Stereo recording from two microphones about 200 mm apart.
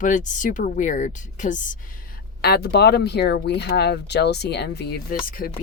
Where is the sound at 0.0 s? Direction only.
40° left (ahead or behind).